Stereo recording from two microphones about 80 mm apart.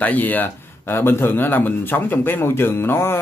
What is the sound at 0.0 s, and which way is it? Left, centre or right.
Speech, left.